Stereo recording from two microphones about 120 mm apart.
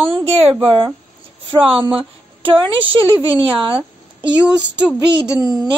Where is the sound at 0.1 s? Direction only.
55° right (ahead or behind).